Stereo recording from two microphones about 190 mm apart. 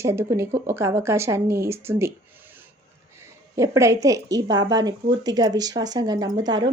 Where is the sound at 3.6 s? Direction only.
15° right (ahead or behind).